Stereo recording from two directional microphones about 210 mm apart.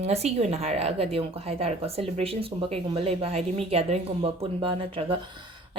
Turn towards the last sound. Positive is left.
turn(degrees=-25)  # may be behind; listen again after turning